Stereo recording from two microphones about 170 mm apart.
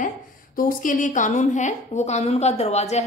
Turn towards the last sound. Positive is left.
turn(degrees=40)  # may be behind; listen again after turning